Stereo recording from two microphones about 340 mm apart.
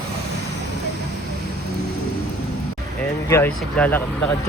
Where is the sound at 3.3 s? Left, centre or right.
Centre.